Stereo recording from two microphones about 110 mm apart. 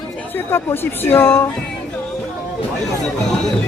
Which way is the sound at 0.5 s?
20° left (ahead or behind).